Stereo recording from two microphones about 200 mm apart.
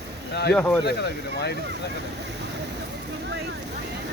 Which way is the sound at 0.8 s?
55° left (ahead or behind).